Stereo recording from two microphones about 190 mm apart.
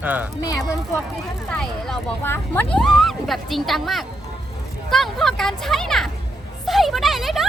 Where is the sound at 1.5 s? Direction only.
5° left (ahead or behind).